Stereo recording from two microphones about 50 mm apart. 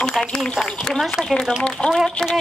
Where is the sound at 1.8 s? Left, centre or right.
Left.